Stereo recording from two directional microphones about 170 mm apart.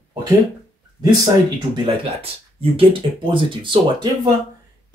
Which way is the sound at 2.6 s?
30° right (ahead or behind).